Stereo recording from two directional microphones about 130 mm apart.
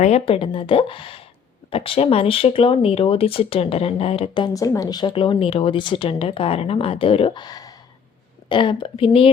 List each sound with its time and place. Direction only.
0.0 s speech: 50° left (ahead or behind)
4.4 s speech: 25° left (ahead or behind); by 9.3 s 45° left (ahead or behind)